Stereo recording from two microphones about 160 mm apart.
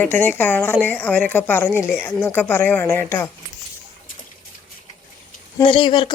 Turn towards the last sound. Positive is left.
turn(degrees=30)  # may be behind; listen again after turning